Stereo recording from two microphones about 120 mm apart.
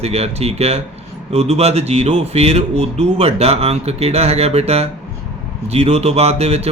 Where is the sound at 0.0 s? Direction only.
60° right (ahead or behind).